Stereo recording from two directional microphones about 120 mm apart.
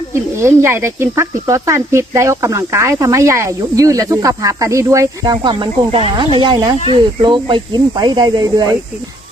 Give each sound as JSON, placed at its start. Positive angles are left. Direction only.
{"t": 0.1, "sound": "speech", "side_deg": -20}